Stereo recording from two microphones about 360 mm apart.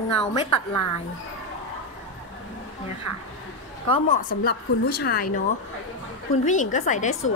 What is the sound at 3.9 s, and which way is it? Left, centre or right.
A woman's voice, left.